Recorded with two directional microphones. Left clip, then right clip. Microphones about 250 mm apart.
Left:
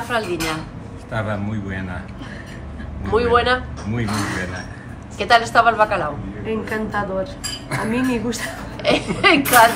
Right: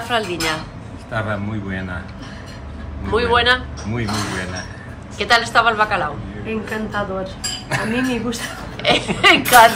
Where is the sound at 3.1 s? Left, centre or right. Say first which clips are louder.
Right 1 dB; centre.